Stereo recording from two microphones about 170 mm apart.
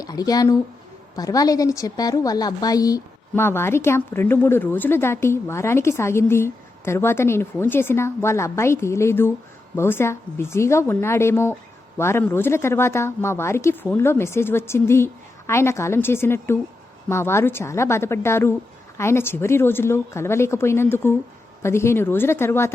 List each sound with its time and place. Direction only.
0.0 s a woman's voice: 20° left (ahead or behind)